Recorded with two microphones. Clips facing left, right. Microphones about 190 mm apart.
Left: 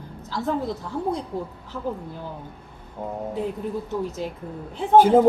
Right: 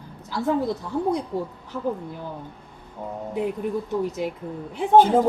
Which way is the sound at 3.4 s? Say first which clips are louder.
Right 4 dB; 15° right (ahead or behind).